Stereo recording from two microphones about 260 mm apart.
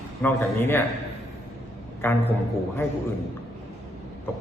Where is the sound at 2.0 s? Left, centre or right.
Centre.